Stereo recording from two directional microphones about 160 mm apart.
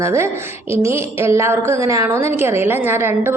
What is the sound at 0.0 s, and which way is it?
A woman's voice, 15° right (ahead or behind).